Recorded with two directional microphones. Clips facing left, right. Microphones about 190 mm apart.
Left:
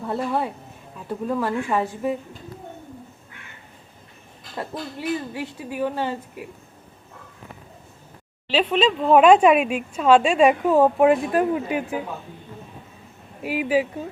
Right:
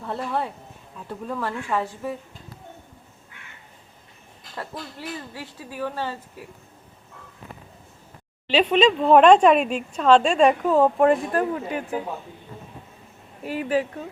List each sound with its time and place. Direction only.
0.0 s speech: 10° left (ahead or behind)
4.5 s speech: 20° left (ahead or behind)
8.4 s speech: centre (ahead or behind)
13.4 s speech: 10° left (ahead or behind)